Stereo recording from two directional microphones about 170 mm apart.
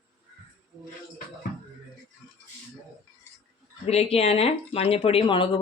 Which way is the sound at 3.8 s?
35° left (ahead or behind).